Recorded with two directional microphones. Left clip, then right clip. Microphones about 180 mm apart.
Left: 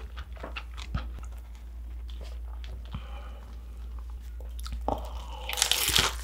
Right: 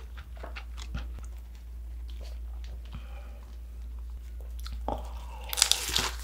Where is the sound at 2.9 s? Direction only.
25° left (ahead or behind).